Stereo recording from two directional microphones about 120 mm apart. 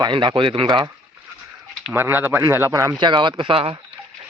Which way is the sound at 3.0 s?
40° right (ahead or behind).